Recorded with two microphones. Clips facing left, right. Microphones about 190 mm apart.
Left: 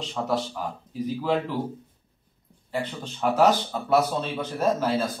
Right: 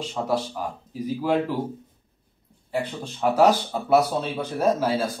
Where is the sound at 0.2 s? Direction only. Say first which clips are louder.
Right 1 dB; 15° right (ahead or behind).